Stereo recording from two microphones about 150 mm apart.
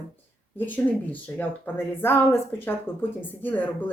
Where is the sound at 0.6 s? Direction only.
10° left (ahead or behind).